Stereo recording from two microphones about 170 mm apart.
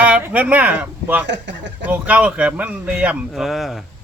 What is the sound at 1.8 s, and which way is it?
A man's voice, 10° right (ahead or behind).